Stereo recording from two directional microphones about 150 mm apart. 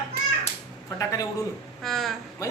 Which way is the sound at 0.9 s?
25° left (ahead or behind).